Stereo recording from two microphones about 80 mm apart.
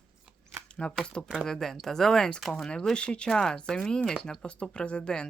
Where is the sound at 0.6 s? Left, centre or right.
Centre.